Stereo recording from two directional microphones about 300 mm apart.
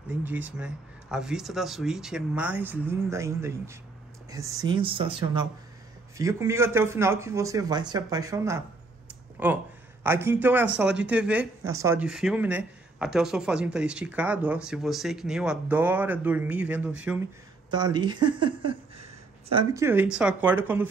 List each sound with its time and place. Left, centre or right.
0.2 s a man's voice: centre
17.8 s a man's voice: centre